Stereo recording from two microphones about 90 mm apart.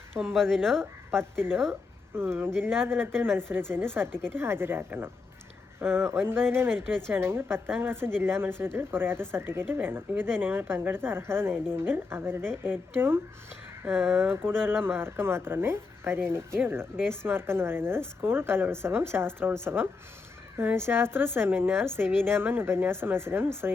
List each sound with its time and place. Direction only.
0.3 s speech: 5° left (ahead or behind)
2.1 s speech: 25° right (ahead or behind)